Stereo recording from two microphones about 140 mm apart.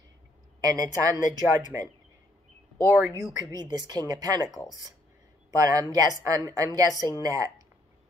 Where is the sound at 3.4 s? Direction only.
30° right (ahead or behind).